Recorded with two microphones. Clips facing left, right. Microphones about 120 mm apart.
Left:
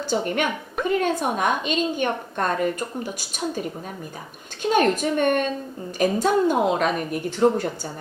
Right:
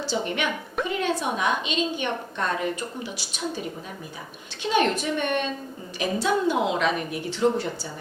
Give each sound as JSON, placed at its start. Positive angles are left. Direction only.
{"t": 0.0, "sound": "a woman's voice", "side_deg": 45}